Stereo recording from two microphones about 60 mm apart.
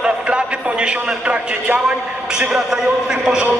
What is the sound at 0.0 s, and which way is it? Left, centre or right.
A man's voice, centre.